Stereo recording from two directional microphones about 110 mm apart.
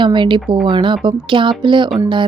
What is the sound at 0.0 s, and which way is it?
A woman's voice, 50° right (ahead or behind).